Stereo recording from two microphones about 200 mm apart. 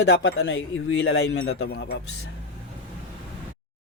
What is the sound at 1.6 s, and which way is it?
Speech, 55° left (ahead or behind).